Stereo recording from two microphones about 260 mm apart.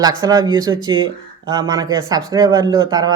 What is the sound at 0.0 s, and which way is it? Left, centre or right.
Speech, centre.